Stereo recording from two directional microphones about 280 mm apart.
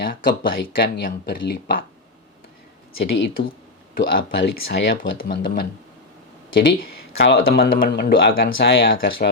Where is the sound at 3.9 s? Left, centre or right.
Left.